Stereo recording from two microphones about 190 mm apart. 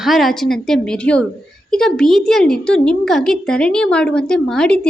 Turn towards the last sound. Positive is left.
turn(degrees=5)  # may be behind; listen again after turning